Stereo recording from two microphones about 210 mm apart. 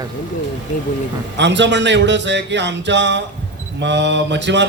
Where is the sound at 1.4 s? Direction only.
55° right (ahead or behind).